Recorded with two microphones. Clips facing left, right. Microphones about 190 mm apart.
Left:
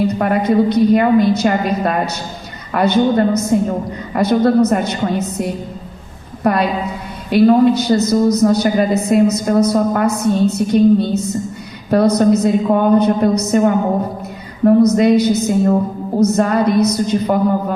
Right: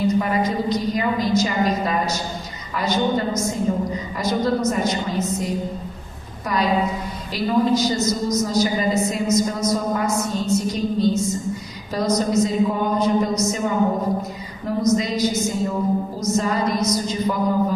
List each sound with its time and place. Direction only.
0.1 s a woman's voice: 60° left (ahead or behind)